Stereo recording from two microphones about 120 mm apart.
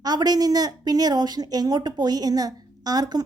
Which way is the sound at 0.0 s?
35° right (ahead or behind).